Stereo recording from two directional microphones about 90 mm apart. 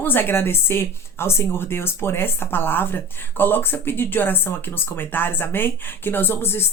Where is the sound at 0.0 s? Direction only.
25° left (ahead or behind).